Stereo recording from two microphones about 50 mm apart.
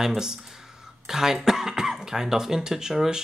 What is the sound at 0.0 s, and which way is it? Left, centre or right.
Speech, centre.